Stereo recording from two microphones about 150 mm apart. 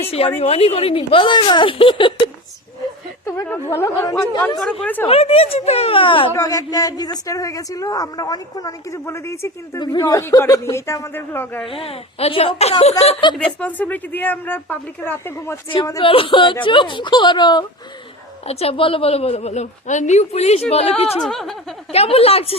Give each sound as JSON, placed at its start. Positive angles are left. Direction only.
{"t": 0.3, "sound": "speech", "side_deg": 40}
{"t": 3.4, "sound": "speech", "side_deg": 15}
{"t": 4.6, "sound": "speech", "side_deg": 10}
{"t": 5.0, "sound": "speech", "side_deg": 40}
{"t": 6.3, "sound": "a woman's voice", "side_deg": 25}
{"t": 11.6, "sound": "speech", "side_deg": 40}
{"t": 13.3, "sound": "speech", "side_deg": 10}
{"t": 16.0, "sound": "speech", "side_deg": 35}
{"t": 18.4, "sound": "a woman's voice", "side_deg": 40}
{"t": 21.2, "sound": "chuckle", "side_deg": 5}
{"t": 21.9, "sound": "speech", "side_deg": 40}